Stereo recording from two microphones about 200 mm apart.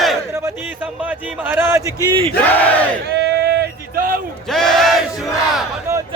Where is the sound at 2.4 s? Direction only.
5° left (ahead or behind).